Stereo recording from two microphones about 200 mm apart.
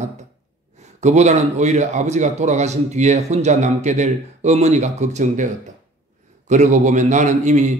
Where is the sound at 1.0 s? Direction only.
35° right (ahead or behind).